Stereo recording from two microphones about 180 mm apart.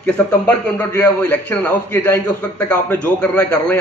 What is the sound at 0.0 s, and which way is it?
A man's voice, 10° left (ahead or behind).